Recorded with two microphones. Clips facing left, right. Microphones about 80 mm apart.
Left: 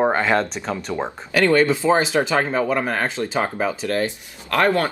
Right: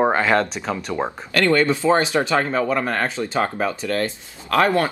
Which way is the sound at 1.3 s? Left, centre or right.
Centre.